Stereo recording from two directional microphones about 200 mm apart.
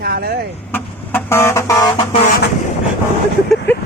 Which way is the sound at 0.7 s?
10° left (ahead or behind).